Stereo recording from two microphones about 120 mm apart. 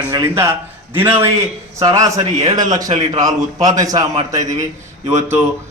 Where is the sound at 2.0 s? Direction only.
30° right (ahead or behind).